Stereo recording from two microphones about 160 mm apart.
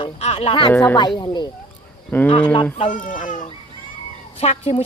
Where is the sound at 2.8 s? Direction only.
55° left (ahead or behind).